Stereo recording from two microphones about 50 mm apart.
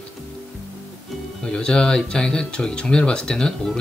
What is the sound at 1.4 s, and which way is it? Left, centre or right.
Speech, centre.